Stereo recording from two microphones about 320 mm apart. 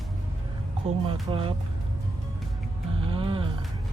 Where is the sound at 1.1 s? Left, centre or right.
Centre.